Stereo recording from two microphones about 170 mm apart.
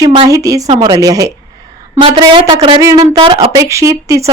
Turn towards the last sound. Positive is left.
turn(degrees=-20)  # may be behind; listen again after turning